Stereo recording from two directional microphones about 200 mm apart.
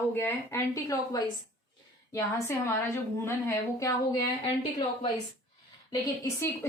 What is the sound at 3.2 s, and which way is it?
Speech, 15° left (ahead or behind).